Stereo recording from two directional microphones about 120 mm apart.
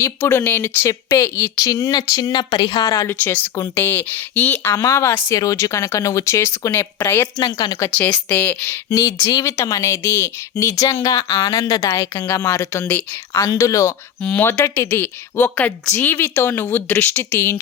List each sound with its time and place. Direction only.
0.0 s speech: 20° left (ahead or behind)
3.1 s speech: 15° left (ahead or behind)
7.4 s speech: 35° left (ahead or behind)
7.9 s speech: 10° left (ahead or behind)
13.4 s speech: 30° left (ahead or behind)
14.2 s speech: 15° left (ahead or behind)